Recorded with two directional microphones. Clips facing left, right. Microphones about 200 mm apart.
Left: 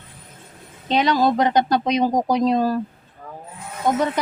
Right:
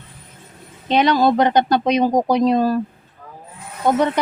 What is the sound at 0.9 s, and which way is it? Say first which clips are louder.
Speech: right 3 dB; 65° right (ahead or behind).